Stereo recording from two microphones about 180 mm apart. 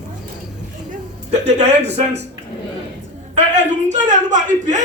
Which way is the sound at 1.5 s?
35° right (ahead or behind).